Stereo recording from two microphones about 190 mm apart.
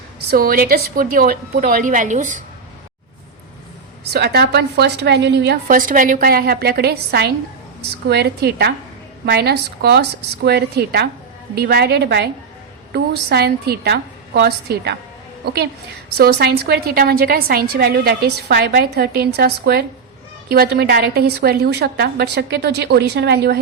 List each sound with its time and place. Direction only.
0.3 s a woman's voice: 50° right (ahead or behind)
4.1 s a woman's voice: 55° right (ahead or behind)
5.6 s a woman's voice: 45° right (ahead or behind)
16.1 s a woman's voice: 55° right (ahead or behind)